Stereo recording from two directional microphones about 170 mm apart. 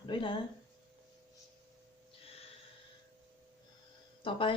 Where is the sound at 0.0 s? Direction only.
30° left (ahead or behind).